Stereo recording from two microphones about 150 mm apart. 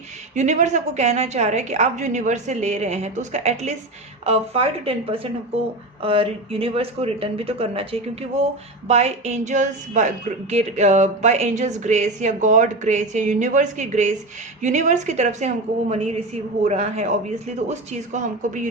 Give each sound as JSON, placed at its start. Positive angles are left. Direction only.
{"t": 0.3, "sound": "a woman's voice", "side_deg": -50}